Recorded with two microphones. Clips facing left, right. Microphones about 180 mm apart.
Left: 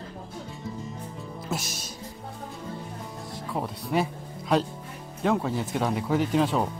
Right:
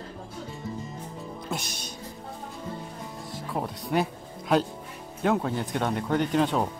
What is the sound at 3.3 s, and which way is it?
Music, centre (ahead or behind).